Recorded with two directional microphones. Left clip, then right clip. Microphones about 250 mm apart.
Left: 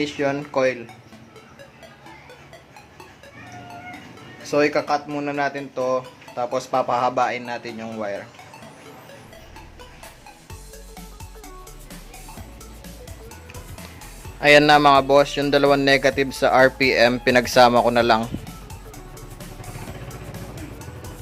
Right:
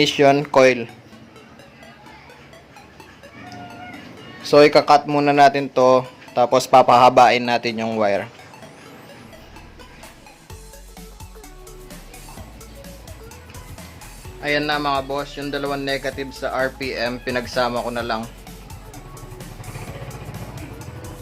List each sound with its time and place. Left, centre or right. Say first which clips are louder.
0.0 s speech: right 9 dB; right
4.4 s speech: right 8 dB; right
14.4 s speech: left 8 dB; left
20.3 s music: right 1 dB; centre